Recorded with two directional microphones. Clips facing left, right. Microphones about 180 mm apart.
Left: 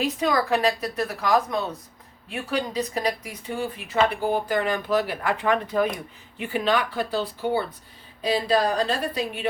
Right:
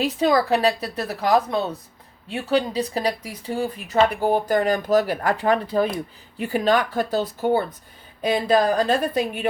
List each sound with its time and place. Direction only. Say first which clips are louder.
0.0 s a woman's voice: right 4 dB; 30° right (ahead or behind); by 9.5 s 50° right (ahead or behind)